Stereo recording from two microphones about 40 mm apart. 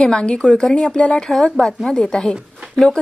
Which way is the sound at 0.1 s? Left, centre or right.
Left.